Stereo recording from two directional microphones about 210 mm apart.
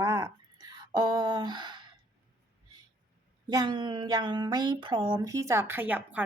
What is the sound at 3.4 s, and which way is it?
Speech, 20° right (ahead or behind).